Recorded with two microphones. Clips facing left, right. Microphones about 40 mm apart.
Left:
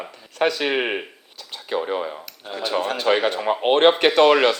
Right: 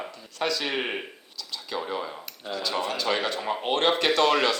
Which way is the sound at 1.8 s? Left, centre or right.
Left.